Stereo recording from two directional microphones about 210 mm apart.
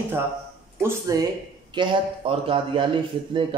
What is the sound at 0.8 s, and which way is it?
A man's voice, 15° right (ahead or behind).